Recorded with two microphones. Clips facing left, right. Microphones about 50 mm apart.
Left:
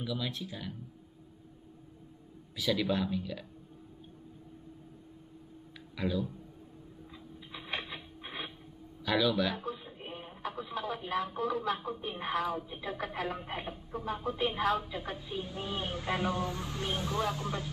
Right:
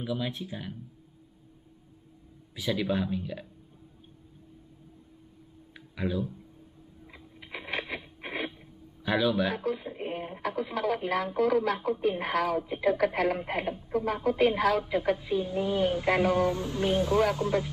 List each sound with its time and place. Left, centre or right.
0.0 s speech: right
2.5 s speech: centre
5.9 s speech: centre
7.3 s a sound: right
9.0 s speech: right
9.8 s speech: right
16.1 s speech: right